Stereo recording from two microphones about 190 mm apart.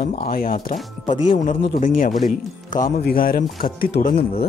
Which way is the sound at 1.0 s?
25° left (ahead or behind).